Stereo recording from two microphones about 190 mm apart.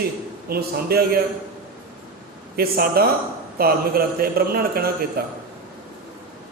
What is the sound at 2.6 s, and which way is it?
A man's voice, 55° right (ahead or behind).